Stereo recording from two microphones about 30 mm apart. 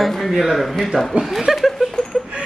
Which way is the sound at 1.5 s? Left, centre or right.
Centre.